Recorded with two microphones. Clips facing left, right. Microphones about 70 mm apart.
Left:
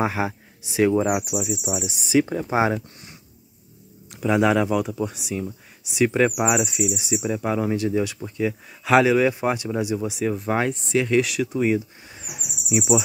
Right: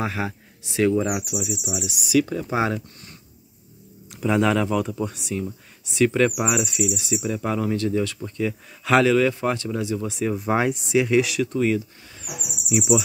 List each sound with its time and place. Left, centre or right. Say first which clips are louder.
0.0 s speech: left 3 dB; centre
4.1 s speech: left 1 dB; centre
10.3 s speech: right 1 dB; centre
11.5 s a sound: left 2 dB; centre